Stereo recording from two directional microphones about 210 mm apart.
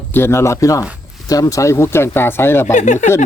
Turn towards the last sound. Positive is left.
turn(degrees=35)  # may be behind; listen again after turning